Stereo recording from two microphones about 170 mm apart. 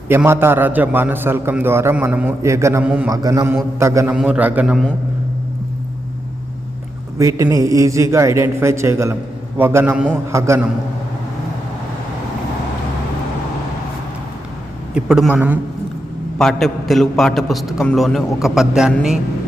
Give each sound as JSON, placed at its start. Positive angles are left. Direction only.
{"t": 0.1, "sound": "a man's voice", "side_deg": -15}
{"t": 3.1, "sound": "a man's voice", "side_deg": -20}
{"t": 4.1, "sound": "a man's voice", "side_deg": -5}
{"t": 7.2, "sound": "a man's voice", "side_deg": -20}
{"t": 14.9, "sound": "a man's voice", "side_deg": -5}